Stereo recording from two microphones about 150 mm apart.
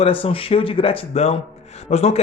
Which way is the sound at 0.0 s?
35° left (ahead or behind).